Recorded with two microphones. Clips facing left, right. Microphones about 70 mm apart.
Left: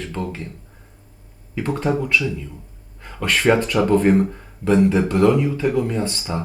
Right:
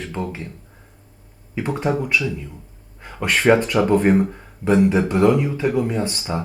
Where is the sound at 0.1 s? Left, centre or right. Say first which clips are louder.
Even; centre.